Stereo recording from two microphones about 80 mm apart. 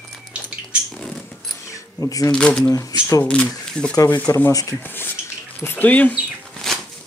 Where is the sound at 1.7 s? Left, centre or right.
Left.